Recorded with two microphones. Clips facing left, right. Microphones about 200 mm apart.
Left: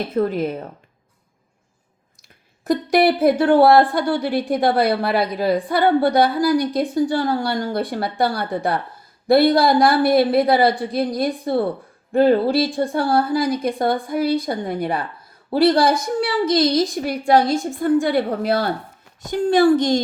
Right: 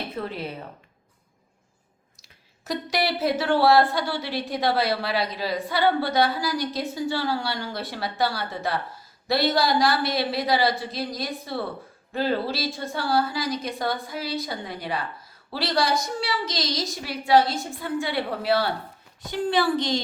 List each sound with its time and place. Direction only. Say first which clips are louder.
0.2 s a woman's voice: left 13 dB; 45° left (ahead or behind)
2.6 s a woman's voice: left 10 dB; 55° left (ahead or behind)